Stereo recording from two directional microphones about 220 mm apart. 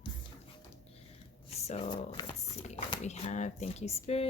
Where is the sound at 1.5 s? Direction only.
30° left (ahead or behind).